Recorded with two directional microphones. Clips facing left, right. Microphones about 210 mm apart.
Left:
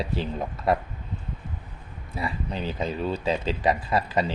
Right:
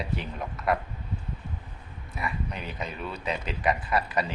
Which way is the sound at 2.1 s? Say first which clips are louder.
Left 3 dB; 30° left (ahead or behind).